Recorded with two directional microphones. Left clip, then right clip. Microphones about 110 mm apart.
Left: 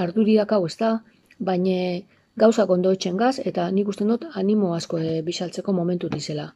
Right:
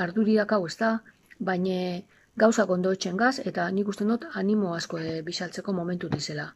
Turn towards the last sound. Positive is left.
turn(degrees=25)  # may be behind; listen again after turning